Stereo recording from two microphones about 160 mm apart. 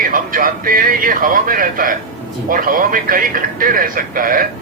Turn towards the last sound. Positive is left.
turn(degrees=-60)  # may be behind; listen again after turning